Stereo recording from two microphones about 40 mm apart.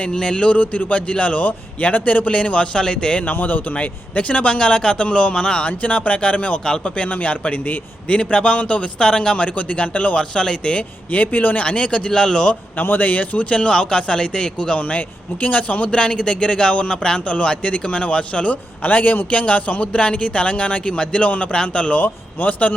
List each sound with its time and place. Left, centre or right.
0.1 s a man's voice: left
1.5 s a man's voice: left
2.7 s speech: centre
3.2 s a man's voice: left
8.2 s speech: left
9.6 s a man's voice: left
10.2 s speech: left
11.1 s speech: left; by 12.5 s centre
12.8 s speech: left
14.8 s a man's voice: left
18.8 s a man's voice: left
22.0 s speech: left